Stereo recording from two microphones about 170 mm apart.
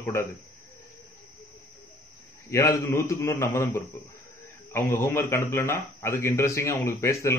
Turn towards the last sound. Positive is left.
turn(degrees=15)  # may be behind; listen again after turning